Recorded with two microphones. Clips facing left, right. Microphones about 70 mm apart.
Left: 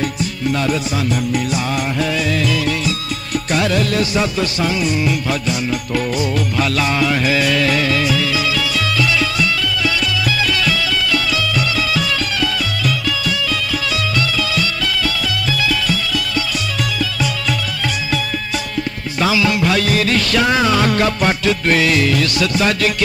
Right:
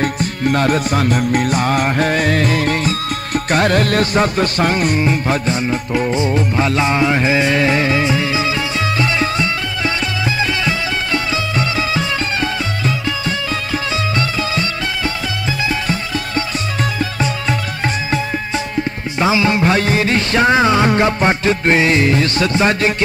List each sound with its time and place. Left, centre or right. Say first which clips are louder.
0.0 s music: right 3 dB; right
5.0 s music: right 2 dB; right
14.1 s music: even; right
19.1 s music: right 1 dB; right